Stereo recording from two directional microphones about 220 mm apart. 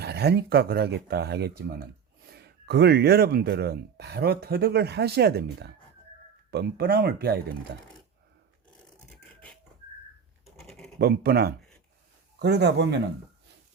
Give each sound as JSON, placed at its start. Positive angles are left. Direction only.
{"t": 0.0, "sound": "speech", "side_deg": -50}
{"t": 9.0, "sound": "a sound", "side_deg": 5}
{"t": 10.6, "sound": "typing", "side_deg": 0}
{"t": 10.9, "sound": "speech", "side_deg": -45}